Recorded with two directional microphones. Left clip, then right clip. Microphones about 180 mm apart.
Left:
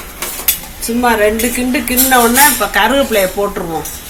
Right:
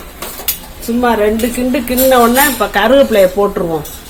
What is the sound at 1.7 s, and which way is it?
Speech, 55° right (ahead or behind).